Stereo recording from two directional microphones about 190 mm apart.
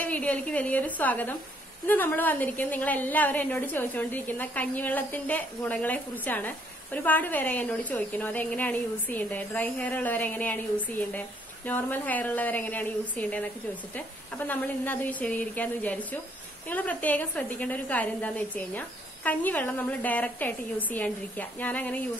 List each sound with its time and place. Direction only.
0.0 s a woman's voice: 5° left (ahead or behind)